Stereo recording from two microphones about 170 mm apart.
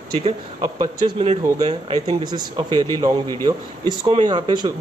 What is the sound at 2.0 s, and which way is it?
Speech, 25° right (ahead or behind).